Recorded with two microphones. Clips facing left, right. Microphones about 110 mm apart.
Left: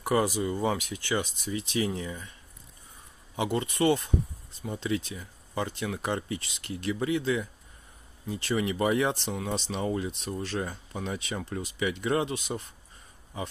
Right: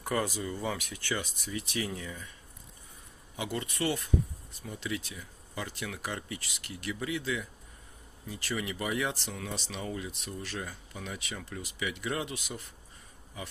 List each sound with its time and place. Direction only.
0.0 s speech: 15° left (ahead or behind)
3.3 s speech: 25° left (ahead or behind)